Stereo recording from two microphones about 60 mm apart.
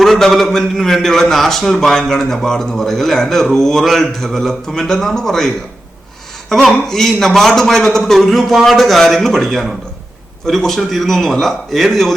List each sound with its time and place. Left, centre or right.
0.0 s a man's voice: centre
6.5 s a man's voice: centre